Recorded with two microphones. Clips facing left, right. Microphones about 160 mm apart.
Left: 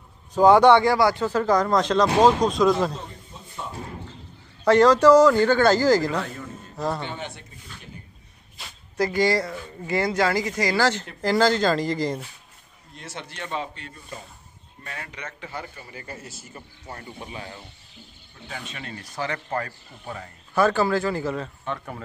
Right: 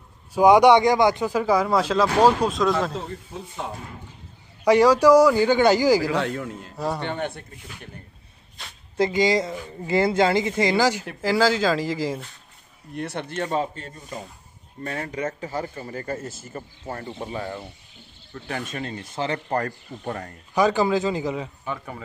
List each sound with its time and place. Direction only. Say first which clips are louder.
0.3 s speech: even; 15° right (ahead or behind)
4.6 s speech: even; 10° right (ahead or behind)
6.1 s a man's voice: right 4 dB; 85° right
7.1 s speech: right 6 dB; 55° right (ahead or behind)
8.6 s a sound: even; 5° left (ahead or behind)
8.9 s speech: right 1 dB; 20° right (ahead or behind)
10.8 s speech: right 1 dB; 10° right (ahead or behind)
12.9 s speech: right 9 dB; 60° right (ahead or behind)
18.7 s speech: right 6 dB; 35° right (ahead or behind)
18.9 s speech: right 1 dB; 25° right (ahead or behind)
19.6 s speech: right 6 dB; 55° right (ahead or behind)
20.5 s speech: right 1 dB; 15° right (ahead or behind)
21.6 s speech: even; centre (ahead or behind)